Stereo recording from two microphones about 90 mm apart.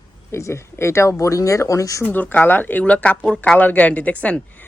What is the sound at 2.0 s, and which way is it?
Speech, 20° left (ahead or behind).